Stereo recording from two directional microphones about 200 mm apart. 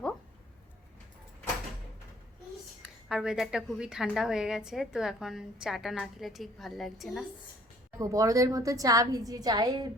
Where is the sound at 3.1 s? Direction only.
Centre (ahead or behind).